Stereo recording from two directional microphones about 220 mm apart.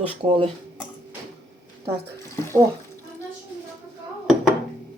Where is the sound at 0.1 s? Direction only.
25° right (ahead or behind).